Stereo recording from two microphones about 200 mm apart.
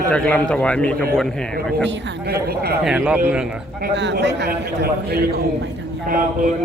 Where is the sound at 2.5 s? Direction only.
50° right (ahead or behind).